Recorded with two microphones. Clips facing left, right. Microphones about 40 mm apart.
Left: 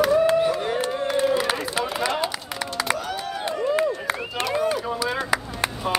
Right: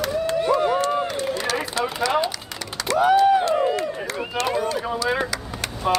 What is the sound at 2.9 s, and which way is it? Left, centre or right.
Crowd, right.